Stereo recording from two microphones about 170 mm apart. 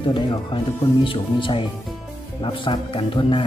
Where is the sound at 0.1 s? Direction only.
30° left (ahead or behind).